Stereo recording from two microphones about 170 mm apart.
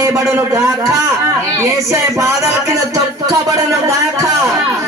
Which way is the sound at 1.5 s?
15° right (ahead or behind).